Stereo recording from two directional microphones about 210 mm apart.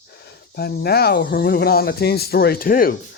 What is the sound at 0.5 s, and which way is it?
Speech, 45° left (ahead or behind).